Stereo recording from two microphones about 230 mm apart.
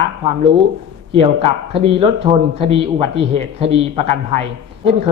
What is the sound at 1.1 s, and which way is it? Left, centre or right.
Speech, right.